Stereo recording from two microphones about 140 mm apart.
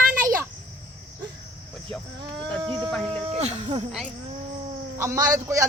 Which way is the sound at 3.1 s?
50° right (ahead or behind).